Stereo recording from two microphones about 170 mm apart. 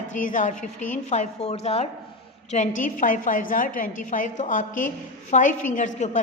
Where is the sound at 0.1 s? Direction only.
50° left (ahead or behind).